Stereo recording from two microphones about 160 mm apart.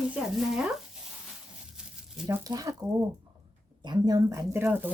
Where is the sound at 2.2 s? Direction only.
20° right (ahead or behind).